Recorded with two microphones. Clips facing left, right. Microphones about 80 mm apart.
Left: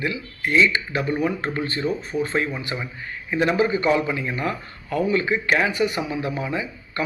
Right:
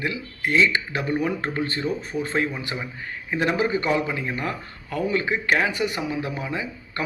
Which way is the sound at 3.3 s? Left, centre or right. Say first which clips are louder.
Left 2 dB; right.